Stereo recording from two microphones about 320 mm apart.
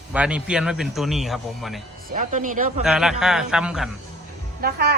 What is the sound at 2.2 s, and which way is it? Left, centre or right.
Speech, right.